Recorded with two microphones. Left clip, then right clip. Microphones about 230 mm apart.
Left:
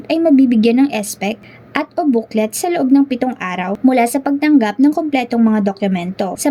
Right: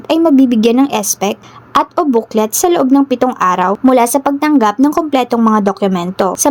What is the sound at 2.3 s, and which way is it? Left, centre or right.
A woman's voice, right.